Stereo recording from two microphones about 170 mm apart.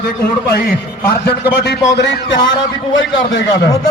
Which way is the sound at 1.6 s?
80° left.